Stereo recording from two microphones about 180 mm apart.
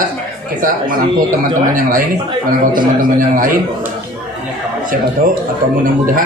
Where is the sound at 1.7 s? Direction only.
50° right (ahead or behind).